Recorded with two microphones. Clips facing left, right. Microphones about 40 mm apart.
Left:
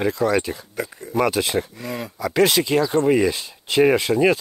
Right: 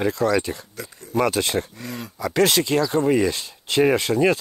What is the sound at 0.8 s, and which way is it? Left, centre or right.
Speech, left.